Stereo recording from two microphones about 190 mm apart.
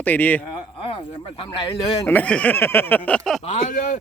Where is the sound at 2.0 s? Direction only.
10° left (ahead or behind).